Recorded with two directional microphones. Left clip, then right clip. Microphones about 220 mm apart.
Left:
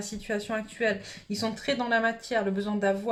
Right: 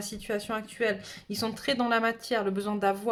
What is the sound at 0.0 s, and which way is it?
Speech, 40° right (ahead or behind).